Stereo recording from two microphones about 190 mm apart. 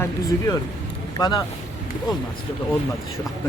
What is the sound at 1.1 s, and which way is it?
Speech, 20° left (ahead or behind).